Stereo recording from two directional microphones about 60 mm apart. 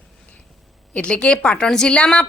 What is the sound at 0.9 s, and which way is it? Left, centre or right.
A woman's voice, centre.